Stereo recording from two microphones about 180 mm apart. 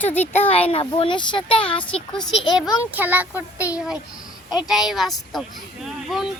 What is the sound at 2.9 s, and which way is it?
A child's voice, 10° right (ahead or behind).